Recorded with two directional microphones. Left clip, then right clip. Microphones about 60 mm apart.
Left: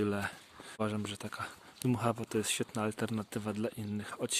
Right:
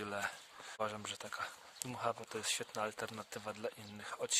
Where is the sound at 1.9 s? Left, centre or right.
Left.